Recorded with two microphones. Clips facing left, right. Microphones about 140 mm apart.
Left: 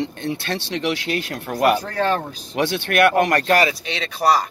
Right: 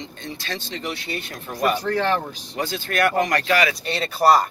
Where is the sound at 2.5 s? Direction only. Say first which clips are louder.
Left 5 dB; 70° left (ahead or behind); by 3.7 s 50° left (ahead or behind).